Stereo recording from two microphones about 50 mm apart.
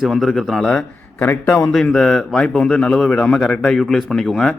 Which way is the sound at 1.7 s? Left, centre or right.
Centre.